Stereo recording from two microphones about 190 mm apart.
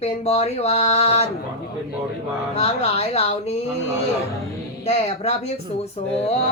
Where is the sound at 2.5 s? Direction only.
35° left (ahead or behind).